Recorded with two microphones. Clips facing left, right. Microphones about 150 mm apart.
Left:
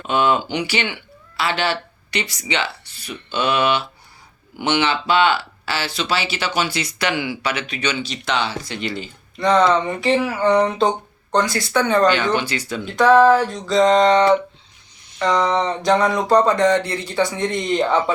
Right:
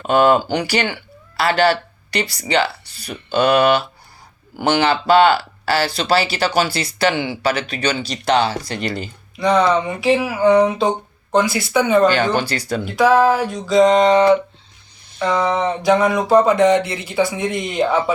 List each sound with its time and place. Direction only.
0.1 s speech: 45° right (ahead or behind)
9.4 s speech: centre (ahead or behind)
12.4 s speech: 40° right (ahead or behind)
12.8 s speech: 5° right (ahead or behind)